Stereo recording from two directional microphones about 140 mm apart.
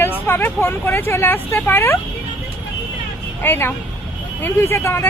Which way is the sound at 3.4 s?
15° left (ahead or behind).